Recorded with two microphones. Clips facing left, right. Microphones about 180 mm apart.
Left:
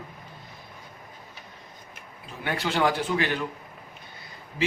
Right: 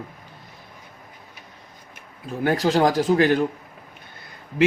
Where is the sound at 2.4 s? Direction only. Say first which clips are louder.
Right 6 dB; 40° right (ahead or behind).